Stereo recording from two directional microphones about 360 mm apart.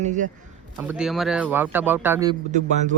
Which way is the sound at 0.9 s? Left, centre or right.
Centre.